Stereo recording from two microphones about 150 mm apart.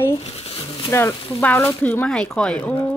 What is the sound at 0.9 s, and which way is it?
Speech, 15° left (ahead or behind).